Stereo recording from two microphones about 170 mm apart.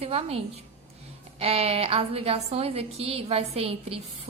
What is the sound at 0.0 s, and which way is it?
A woman's voice, 35° right (ahead or behind).